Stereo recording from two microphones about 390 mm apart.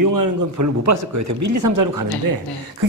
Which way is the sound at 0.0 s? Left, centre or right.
Right.